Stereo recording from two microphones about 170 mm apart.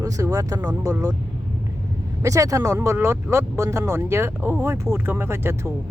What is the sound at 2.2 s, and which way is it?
Speech, 20° right (ahead or behind).